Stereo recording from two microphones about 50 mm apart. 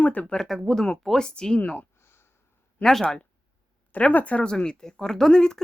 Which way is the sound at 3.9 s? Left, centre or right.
Left.